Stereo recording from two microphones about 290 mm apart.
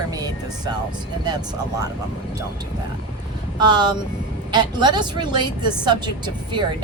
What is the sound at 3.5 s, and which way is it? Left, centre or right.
Speech, centre.